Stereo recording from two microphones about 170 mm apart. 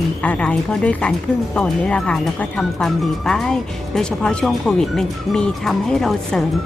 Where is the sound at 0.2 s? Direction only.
5° left (ahead or behind).